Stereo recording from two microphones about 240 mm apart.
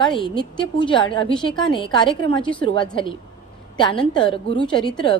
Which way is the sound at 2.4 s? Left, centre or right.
Centre.